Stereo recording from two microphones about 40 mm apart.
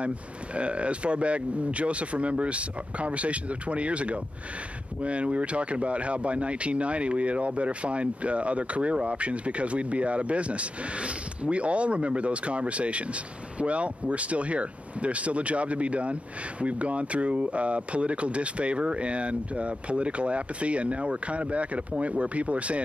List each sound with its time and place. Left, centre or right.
0.6 s speech: right